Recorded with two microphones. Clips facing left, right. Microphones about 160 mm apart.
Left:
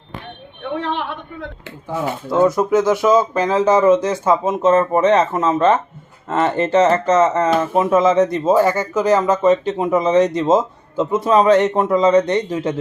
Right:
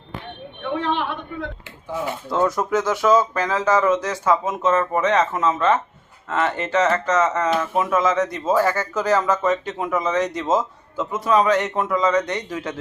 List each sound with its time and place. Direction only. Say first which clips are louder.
2.3 s speech: left 6 dB; 10° left (ahead or behind); by 12.7 s 25° left (ahead or behind)